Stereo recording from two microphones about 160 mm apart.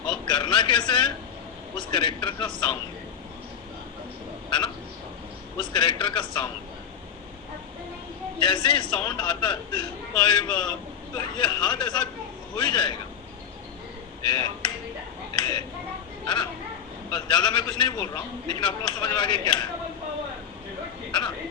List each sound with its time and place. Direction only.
0.0 s a sound: 30° left (ahead or behind)
1.9 s a man's voice: 30° left (ahead or behind)
5.5 s a man's voice: 30° left (ahead or behind)
8.4 s a man's voice: 30° left (ahead or behind)
10.5 s a man's voice: 5° left (ahead or behind)
11.1 s a man's voice: 30° left (ahead or behind)
14.3 s a man's voice: 30° left (ahead or behind)
15.4 s a sound: 30° left (ahead or behind)
16.2 s a man's voice: 30° left (ahead or behind)
21.1 s a sound: 30° left (ahead or behind)